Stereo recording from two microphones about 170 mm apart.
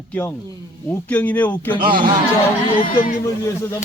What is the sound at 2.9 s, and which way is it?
Speech, 55° left (ahead or behind).